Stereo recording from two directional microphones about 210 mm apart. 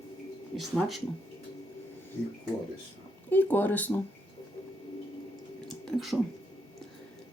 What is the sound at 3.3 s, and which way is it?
Speech, 10° left (ahead or behind).